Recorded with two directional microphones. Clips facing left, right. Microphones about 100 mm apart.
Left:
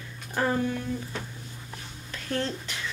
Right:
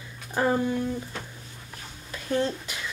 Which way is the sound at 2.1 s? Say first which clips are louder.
Right 4 dB; 10° right (ahead or behind).